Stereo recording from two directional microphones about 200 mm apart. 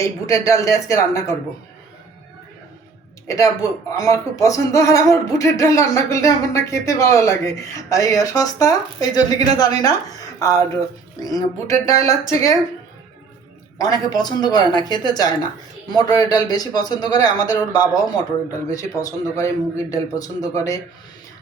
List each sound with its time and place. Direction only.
0.0 s speech: 15° left (ahead or behind)
3.2 s speech: 15° left (ahead or behind)
13.7 s speech: 20° left (ahead or behind)